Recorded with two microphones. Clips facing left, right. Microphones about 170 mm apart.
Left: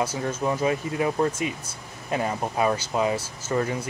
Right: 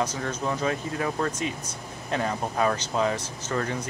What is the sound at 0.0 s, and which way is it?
Speech, 10° left (ahead or behind).